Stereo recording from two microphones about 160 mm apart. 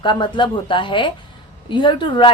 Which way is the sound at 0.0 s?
30° left (ahead or behind).